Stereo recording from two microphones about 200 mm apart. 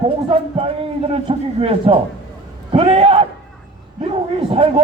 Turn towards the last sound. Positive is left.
turn(degrees=-25)  # may be behind; listen again after turning